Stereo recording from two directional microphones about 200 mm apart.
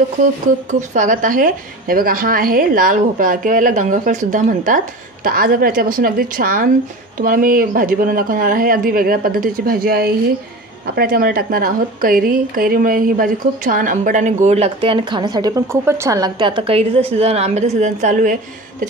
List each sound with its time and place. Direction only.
0.7 s a woman's voice: 40° right (ahead or behind)